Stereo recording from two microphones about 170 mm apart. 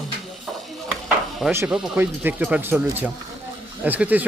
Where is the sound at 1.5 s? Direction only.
10° right (ahead or behind).